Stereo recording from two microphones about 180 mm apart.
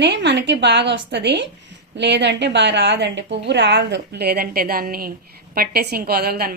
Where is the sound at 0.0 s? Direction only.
75° right (ahead or behind).